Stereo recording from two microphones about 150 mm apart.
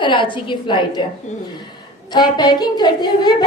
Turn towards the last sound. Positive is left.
turn(degrees=30)  # may be behind; listen again after turning